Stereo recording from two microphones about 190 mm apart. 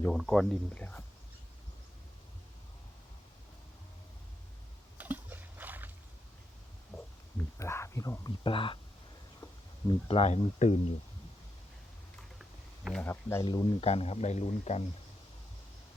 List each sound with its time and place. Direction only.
0.1 s speech: centre (ahead or behind)
4.9 s a sound: 10° right (ahead or behind)
6.9 s a sound: 10° left (ahead or behind)
10.1 s speech: 35° left (ahead or behind)
12.4 s typing: 5° right (ahead or behind)
13.0 s speech: 10° left (ahead or behind)
13.8 s speech: 30° left (ahead or behind)